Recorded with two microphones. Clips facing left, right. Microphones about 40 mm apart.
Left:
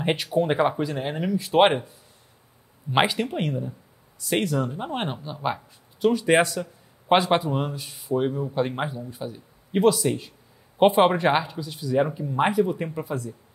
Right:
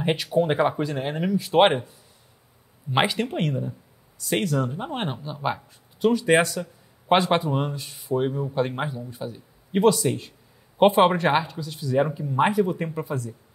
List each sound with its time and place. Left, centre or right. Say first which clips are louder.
0.0 s speech: right 1 dB; centre
2.9 s speech: left 1 dB; centre